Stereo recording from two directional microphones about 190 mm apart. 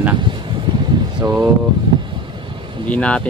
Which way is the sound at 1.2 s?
20° right (ahead or behind).